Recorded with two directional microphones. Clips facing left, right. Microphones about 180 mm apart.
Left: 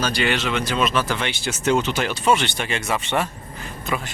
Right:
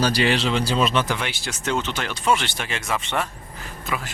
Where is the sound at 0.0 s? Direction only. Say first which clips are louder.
Right 2 dB; 35° right (ahead or behind).